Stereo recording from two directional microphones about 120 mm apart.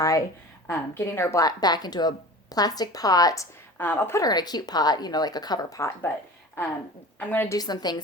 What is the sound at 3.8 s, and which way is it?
Speech, 15° left (ahead or behind).